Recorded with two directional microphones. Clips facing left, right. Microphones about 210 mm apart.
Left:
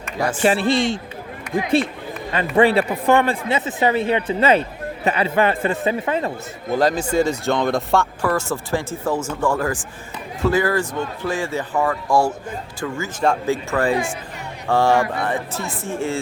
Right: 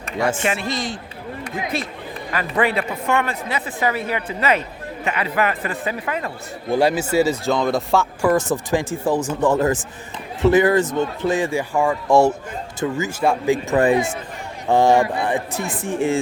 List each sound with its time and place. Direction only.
0.3 s a man's voice: 35° left (ahead or behind)
6.7 s speech: 10° right (ahead or behind)
8.2 s speech: 20° right (ahead or behind)
13.1 s speech: 10° right (ahead or behind)
13.7 s speech: 20° right (ahead or behind)